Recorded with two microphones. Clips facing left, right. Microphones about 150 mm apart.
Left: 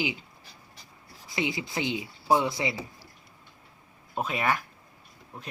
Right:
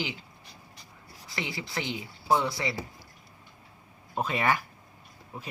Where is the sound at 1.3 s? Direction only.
20° left (ahead or behind).